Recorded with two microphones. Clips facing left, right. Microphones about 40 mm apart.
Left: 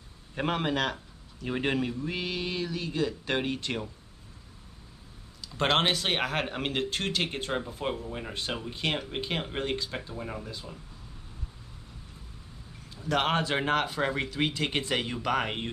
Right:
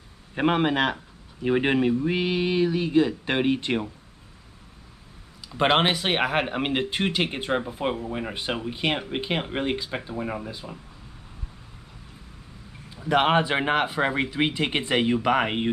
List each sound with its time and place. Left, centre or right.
0.3 s speech: right
5.5 s speech: centre
12.9 s speech: right